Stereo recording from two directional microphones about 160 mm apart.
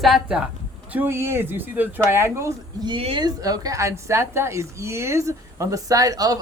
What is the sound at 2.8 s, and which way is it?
A woman's voice, 30° right (ahead or behind).